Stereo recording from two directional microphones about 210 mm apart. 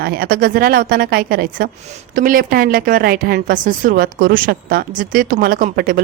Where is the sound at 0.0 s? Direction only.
45° right (ahead or behind).